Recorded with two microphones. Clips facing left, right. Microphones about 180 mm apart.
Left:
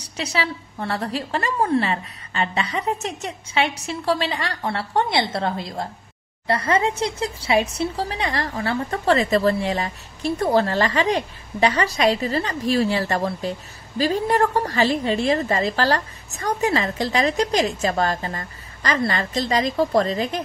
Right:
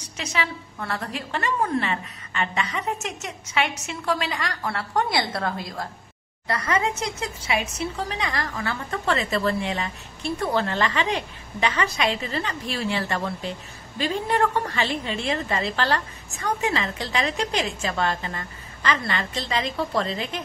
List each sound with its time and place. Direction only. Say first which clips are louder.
0.0 s speech: left 3 dB; 35° left (ahead or behind)